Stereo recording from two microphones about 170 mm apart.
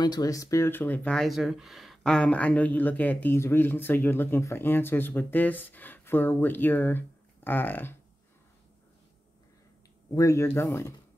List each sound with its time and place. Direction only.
0.0 s speech: 20° left (ahead or behind)
10.1 s speech: 20° left (ahead or behind)